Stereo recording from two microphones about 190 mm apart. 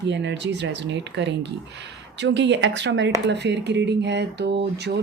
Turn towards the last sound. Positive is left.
turn(degrees=-60)  # may be behind; listen again after turning